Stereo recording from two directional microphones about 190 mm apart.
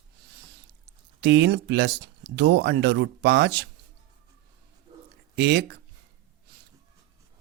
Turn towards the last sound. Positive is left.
turn(degrees=-60)  # may be behind; listen again after turning